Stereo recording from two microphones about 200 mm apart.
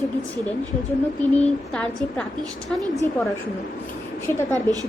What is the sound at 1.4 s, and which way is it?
A woman's voice, 5° left (ahead or behind).